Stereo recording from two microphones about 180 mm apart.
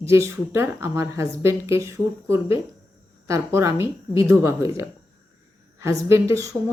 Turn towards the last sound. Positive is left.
turn(degrees=-15)  # may be behind; listen again after turning